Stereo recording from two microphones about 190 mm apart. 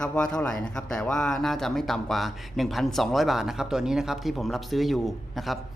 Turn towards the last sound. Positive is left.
turn(degrees=0)  # may be behind; listen again after turning